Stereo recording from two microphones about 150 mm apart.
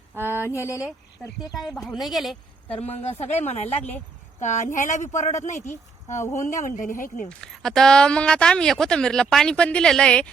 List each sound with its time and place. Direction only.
0.1 s speech: 15° right (ahead or behind)
0.4 s speech: 20° left (ahead or behind)
1.7 s speech: centre (ahead or behind)
2.7 s speech: 45° left (ahead or behind)
5.5 s speech: 15° left (ahead or behind)
6.4 s speech: 55° left (ahead or behind)
7.3 s speech: 5° left (ahead or behind)